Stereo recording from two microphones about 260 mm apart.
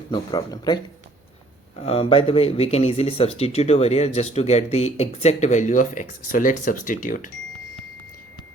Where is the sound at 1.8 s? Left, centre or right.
Left.